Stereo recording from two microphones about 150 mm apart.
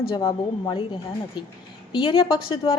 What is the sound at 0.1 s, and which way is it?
Speech, 25° left (ahead or behind).